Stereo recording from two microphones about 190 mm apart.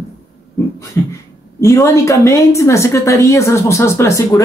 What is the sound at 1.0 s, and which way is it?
A woman's voice, 15° left (ahead or behind).